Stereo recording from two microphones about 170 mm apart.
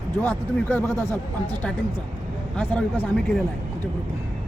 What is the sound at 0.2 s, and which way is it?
Speech, 10° left (ahead or behind).